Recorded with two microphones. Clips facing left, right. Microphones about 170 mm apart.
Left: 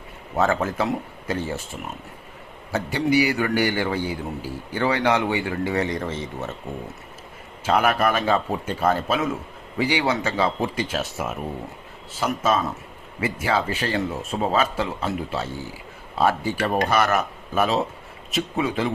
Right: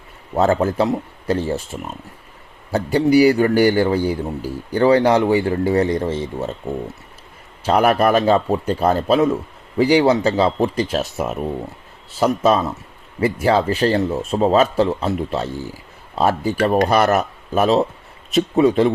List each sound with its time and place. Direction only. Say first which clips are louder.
0.3 s speech: right 6 dB; 35° right (ahead or behind)
2.7 s speech: right 7 dB; 35° right (ahead or behind)
7.6 s speech: right 5 dB; 35° right (ahead or behind)